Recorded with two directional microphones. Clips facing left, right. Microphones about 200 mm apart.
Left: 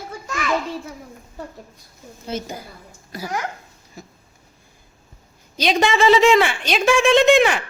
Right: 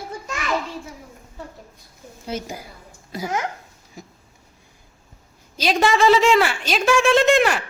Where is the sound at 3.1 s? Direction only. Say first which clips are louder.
Right 2 dB; 20° right (ahead or behind).